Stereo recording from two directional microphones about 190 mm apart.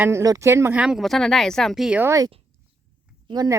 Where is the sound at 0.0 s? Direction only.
15° right (ahead or behind).